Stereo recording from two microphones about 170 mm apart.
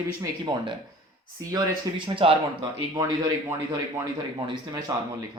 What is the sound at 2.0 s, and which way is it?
Speech, 30° right (ahead or behind).